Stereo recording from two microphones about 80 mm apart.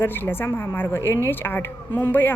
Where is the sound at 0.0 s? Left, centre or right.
Left.